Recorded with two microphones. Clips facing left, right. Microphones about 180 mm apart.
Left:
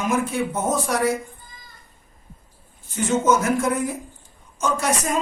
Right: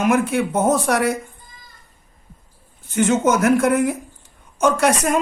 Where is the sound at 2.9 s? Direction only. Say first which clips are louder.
Right 3 dB; 65° right (ahead or behind).